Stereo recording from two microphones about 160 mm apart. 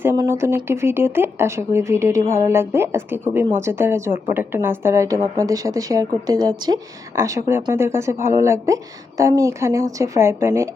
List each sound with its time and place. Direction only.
0.0 s a woman's voice: 15° right (ahead or behind)